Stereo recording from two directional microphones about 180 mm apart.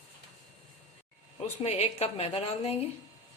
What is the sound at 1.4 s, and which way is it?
Speech, 35° left (ahead or behind).